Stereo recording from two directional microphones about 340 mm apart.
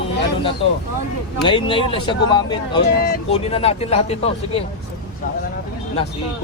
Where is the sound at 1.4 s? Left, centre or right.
Centre.